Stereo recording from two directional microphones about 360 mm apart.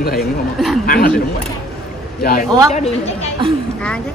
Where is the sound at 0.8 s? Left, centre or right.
Left.